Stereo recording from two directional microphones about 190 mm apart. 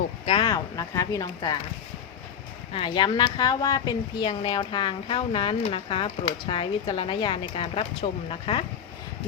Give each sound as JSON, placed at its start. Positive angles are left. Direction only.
{"t": 0.3, "sound": "a woman's voice", "side_deg": 25}
{"t": 2.7, "sound": "a woman's voice", "side_deg": 25}